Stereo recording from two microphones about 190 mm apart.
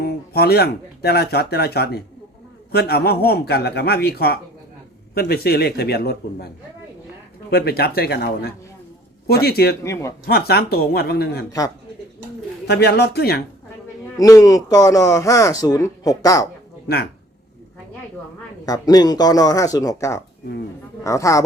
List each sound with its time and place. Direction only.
0.0 s speech: 55° left (ahead or behind)
7.5 s speech: 55° left (ahead or behind)
9.8 s a man's voice: 15° left (ahead or behind)
10.2 s speech: 55° left (ahead or behind)
12.6 s speech: 60° left (ahead or behind)
14.2 s a man's voice: 20° left (ahead or behind)
18.6 s a man's voice: 20° left (ahead or behind)